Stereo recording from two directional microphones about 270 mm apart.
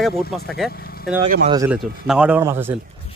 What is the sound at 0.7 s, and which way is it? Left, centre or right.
Speech, left.